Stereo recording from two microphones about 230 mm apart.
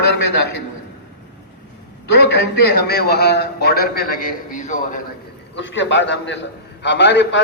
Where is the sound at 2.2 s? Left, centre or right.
Left.